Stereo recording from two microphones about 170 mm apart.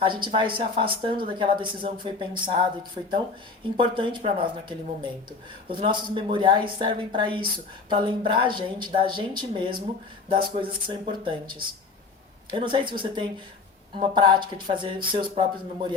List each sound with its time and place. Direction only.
0.0 s speech: 30° right (ahead or behind)
3.8 s speech: 30° right (ahead or behind)
5.6 s speech: 30° right (ahead or behind)
12.5 s speech: 30° right (ahead or behind)